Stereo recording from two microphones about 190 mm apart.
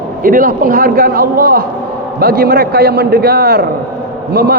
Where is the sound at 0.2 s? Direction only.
45° right (ahead or behind).